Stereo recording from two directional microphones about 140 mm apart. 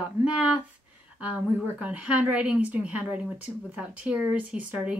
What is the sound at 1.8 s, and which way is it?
Speech, 10° right (ahead or behind).